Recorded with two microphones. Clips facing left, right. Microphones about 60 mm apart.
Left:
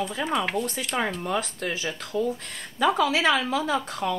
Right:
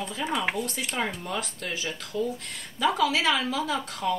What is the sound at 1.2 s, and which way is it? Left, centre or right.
Speech, left.